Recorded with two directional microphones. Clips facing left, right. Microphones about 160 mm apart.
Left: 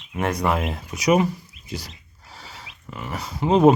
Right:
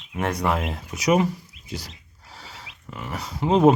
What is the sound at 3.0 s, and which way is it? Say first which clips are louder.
Speech: left 1 dB; 10° left (ahead or behind).